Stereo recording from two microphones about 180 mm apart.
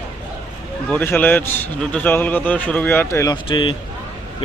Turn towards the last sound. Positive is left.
turn(degrees=25)  # may be behind; listen again after turning